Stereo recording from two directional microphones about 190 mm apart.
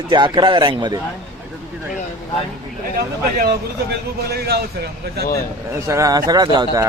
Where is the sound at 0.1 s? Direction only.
25° right (ahead or behind).